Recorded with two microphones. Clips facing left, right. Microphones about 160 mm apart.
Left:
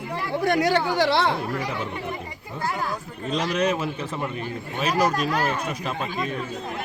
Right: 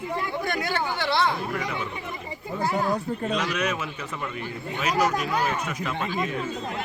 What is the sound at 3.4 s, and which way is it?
Speech, 30° left (ahead or behind).